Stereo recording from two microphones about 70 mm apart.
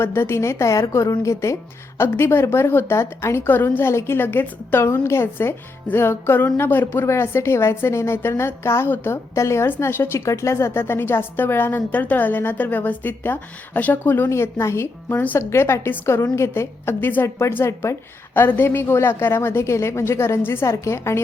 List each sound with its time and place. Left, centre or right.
0.0 s a woman's voice: left
2.0 s a woman's voice: left
14.3 s a woman's voice: left
15.1 s speech: left
15.4 s a woman's voice: left
17.2 s a woman's voice: left
18.3 s a woman's voice: left